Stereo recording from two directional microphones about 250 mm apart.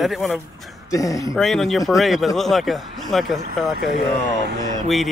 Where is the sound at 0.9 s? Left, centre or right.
Centre.